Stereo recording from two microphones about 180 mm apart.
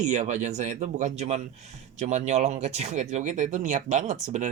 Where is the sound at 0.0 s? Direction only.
40° right (ahead or behind).